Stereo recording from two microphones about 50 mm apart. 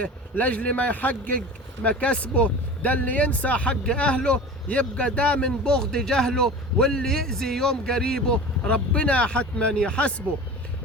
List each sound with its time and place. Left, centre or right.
0.0 s speech: left